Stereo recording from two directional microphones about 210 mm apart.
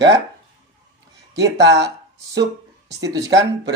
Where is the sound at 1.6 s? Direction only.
55° right (ahead or behind).